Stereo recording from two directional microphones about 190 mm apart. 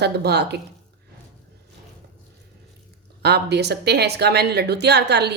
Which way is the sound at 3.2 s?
60° right (ahead or behind).